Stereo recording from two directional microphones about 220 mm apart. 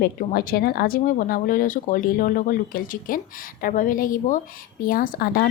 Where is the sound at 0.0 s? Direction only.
40° left (ahead or behind).